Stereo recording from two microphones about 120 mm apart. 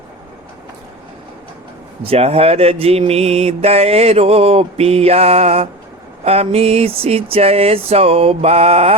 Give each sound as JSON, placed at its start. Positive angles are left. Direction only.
{"t": 2.0, "sound": "mantra", "side_deg": -60}